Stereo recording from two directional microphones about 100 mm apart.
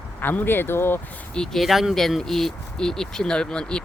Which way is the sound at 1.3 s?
5° left (ahead or behind).